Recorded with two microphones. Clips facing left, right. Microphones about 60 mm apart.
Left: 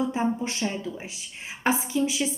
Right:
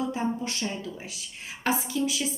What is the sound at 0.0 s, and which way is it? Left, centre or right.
A woman's voice, left.